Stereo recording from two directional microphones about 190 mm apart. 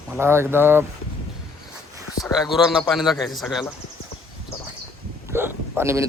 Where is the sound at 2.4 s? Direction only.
Centre (ahead or behind).